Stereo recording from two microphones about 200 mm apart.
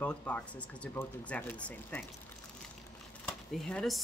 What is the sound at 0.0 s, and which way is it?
Speech, 5° left (ahead or behind).